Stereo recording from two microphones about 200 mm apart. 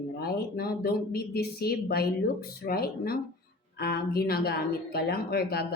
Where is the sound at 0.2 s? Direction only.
50° left (ahead or behind).